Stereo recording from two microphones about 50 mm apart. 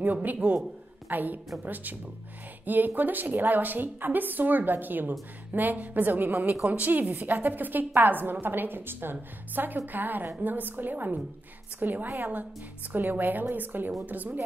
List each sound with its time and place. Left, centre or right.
0.0 s a woman's voice: right